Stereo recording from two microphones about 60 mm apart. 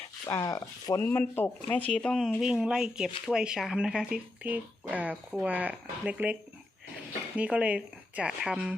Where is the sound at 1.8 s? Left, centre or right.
Centre.